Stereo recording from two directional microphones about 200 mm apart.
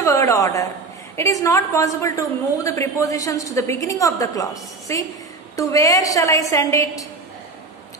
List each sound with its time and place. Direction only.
0.0 s a woman's voice: 15° left (ahead or behind)